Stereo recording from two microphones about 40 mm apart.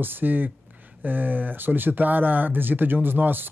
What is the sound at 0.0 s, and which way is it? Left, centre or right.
Speech, right.